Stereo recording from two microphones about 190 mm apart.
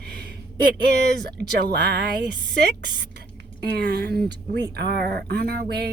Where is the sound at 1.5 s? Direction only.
60° right (ahead or behind).